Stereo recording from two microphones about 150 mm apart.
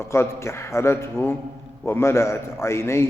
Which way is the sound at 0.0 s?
20° left (ahead or behind).